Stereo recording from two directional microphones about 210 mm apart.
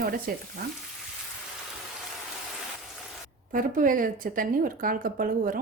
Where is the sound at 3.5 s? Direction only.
40° right (ahead or behind).